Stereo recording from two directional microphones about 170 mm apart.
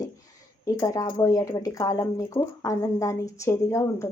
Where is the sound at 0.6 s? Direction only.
20° left (ahead or behind).